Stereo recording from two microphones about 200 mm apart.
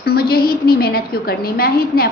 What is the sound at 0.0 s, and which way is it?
A woman's voice, 50° left (ahead or behind).